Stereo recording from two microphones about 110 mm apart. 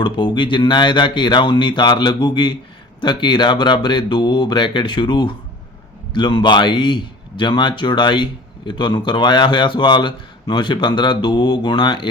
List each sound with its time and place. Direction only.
0.0 s speech: 45° left (ahead or behind)